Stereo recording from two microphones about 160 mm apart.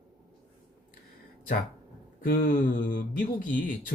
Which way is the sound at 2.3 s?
60° left (ahead or behind).